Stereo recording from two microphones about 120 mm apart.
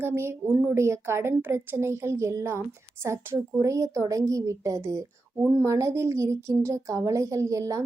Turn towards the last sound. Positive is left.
turn(degrees=-25)  # may be behind; listen again after turning